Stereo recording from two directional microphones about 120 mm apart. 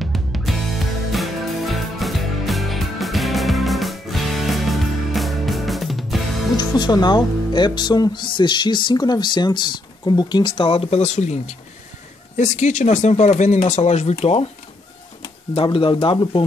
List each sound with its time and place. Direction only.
0.0 s music: centre (ahead or behind)
6.5 s speech: 35° left (ahead or behind); by 14.4 s 65° left (ahead or behind)
15.5 s speech: 50° left (ahead or behind)